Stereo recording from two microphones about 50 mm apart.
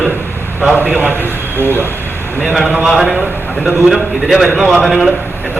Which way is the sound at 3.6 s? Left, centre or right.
Centre.